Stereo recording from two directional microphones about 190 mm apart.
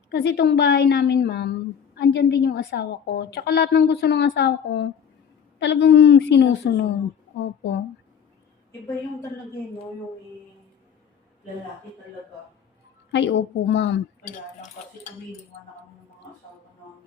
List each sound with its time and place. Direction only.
0.1 s a woman's voice: 60° left (ahead or behind)
13.1 s a woman's voice: 70° left (ahead or behind)
14.3 s cutlery: 35° left (ahead or behind)